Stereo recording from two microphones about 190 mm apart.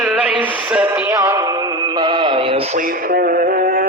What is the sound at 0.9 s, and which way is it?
Music, 10° right (ahead or behind).